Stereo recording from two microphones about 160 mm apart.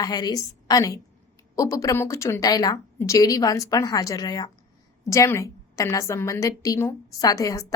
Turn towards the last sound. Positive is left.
turn(degrees=20)  # may be behind; listen again after turning